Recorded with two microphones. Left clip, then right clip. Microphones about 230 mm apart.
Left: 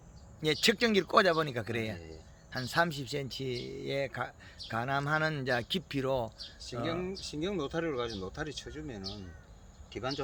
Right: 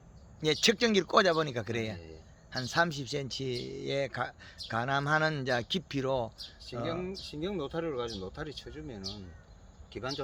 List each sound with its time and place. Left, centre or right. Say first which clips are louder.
0.3 s speech: right 1 dB; centre
6.8 s speech: left 1 dB; centre